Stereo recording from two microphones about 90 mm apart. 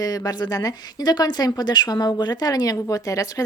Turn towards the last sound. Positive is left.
turn(degrees=40)  # may be behind; listen again after turning